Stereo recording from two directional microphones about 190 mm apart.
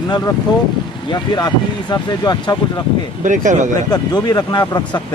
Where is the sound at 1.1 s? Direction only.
25° left (ahead or behind).